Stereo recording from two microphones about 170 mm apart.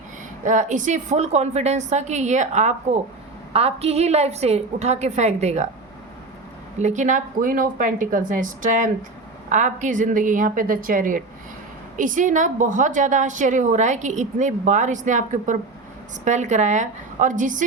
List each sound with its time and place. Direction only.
0.4 s a woman's voice: 45° right (ahead or behind)
6.7 s a woman's voice: 45° right (ahead or behind)